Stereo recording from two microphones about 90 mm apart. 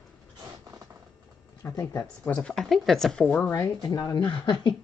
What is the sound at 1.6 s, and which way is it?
Speech, 35° left (ahead or behind).